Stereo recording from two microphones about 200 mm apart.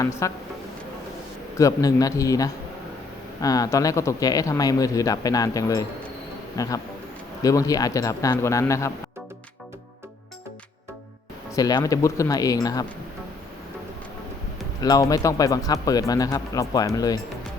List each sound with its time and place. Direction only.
0.0 s speech: 15° left (ahead or behind)
1.5 s speech: 15° left (ahead or behind)
11.5 s speech: 20° left (ahead or behind)
14.8 s speech: 20° left (ahead or behind)